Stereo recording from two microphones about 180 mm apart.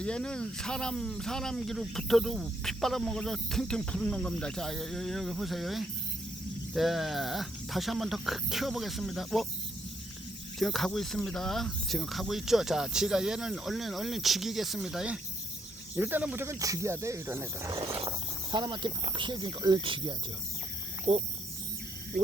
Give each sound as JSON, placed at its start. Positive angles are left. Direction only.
{"t": 0.0, "sound": "speech", "side_deg": 5}
{"t": 10.6, "sound": "speech", "side_deg": 0}
{"t": 18.5, "sound": "speech", "side_deg": -25}